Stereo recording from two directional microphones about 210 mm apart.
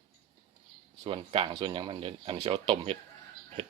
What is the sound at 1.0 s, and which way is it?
Speech, 30° right (ahead or behind).